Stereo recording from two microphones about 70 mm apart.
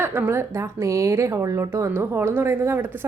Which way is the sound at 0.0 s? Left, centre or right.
Right.